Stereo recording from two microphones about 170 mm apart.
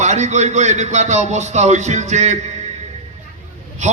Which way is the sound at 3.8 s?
45° right (ahead or behind).